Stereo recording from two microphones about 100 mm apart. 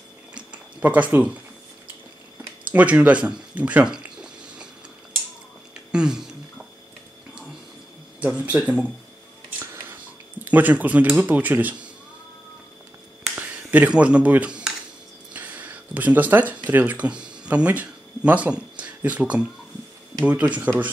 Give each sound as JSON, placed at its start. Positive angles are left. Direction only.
{"t": 0.5, "sound": "a sound", "side_deg": -15}
{"t": 2.7, "sound": "drip", "side_deg": -15}
{"t": 5.9, "sound": "a sound", "side_deg": -10}
{"t": 8.2, "sound": "speech", "side_deg": -15}
{"t": 10.4, "sound": "speech", "side_deg": -15}
{"t": 13.4, "sound": "speech", "side_deg": -15}